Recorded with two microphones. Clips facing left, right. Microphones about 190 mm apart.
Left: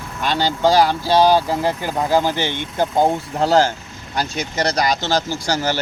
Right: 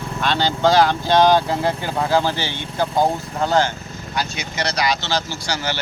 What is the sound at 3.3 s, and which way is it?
Speech, 35° left (ahead or behind).